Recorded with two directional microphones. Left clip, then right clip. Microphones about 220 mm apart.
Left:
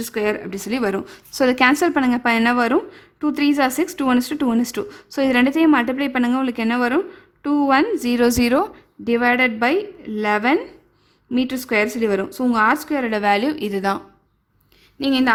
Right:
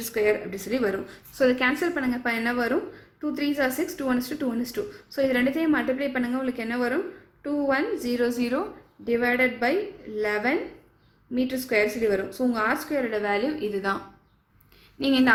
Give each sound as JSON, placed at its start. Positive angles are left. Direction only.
{"t": 0.0, "sound": "a woman's voice", "side_deg": 45}